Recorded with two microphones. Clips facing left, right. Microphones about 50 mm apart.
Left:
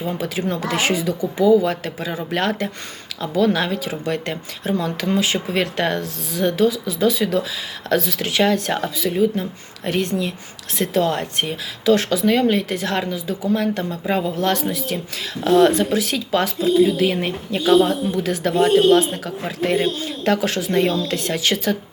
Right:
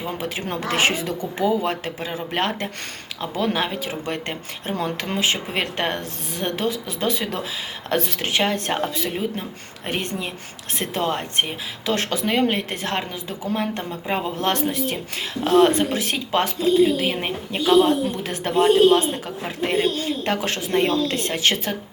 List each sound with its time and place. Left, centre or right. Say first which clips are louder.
0.2 s a woman's voice: left 4 dB; right
20.2 s speech: left 5 dB; right